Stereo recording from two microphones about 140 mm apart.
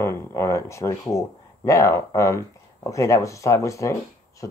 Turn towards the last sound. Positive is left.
turn(degrees=20)  # may be behind; listen again after turning